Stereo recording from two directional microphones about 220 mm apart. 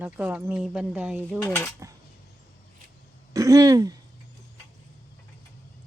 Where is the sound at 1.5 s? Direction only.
15° left (ahead or behind).